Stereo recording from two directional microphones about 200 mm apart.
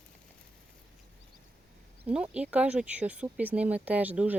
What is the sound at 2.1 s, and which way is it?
Speech, 5° right (ahead or behind).